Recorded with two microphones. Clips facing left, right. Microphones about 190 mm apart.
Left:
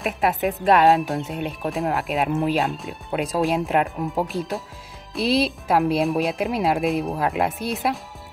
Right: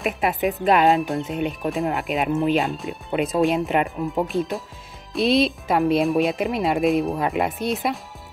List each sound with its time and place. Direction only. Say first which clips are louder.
0.0 s speech: even; centre (ahead or behind)